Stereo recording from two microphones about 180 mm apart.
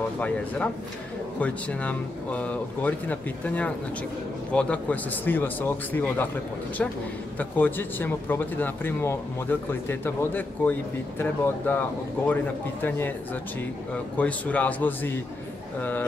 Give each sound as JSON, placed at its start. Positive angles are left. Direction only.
{"t": 0.2, "sound": "a man's voice", "side_deg": 10}
{"t": 12.8, "sound": "a man's voice", "side_deg": 10}